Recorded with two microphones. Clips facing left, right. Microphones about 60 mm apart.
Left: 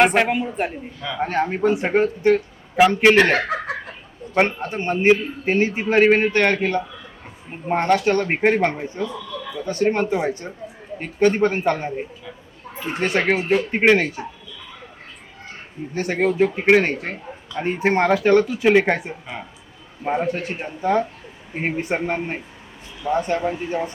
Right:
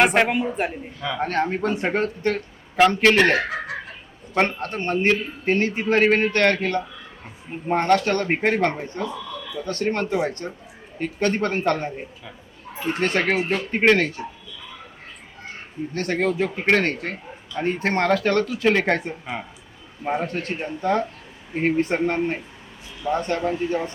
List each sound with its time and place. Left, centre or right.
0.0 s speech: centre
1.2 s a man's voice: centre
4.4 s a man's voice: centre
13.0 s a man's voice: centre
15.9 s a man's voice: centre